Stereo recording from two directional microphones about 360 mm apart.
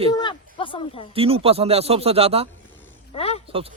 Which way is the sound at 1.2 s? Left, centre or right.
Centre.